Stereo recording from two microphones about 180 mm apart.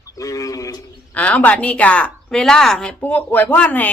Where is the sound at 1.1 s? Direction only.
10° left (ahead or behind).